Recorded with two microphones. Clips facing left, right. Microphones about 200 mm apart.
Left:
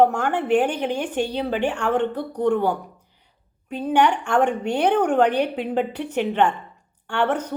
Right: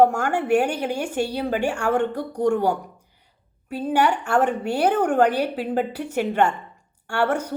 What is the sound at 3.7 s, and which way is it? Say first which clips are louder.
A woman's voice: left 1 dB; 10° right (ahead or behind).